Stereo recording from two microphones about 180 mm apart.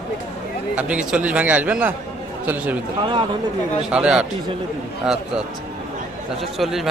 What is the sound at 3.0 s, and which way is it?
Speech, 25° right (ahead or behind).